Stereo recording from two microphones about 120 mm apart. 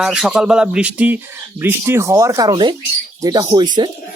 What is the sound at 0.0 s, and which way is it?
Speech, 5° right (ahead or behind).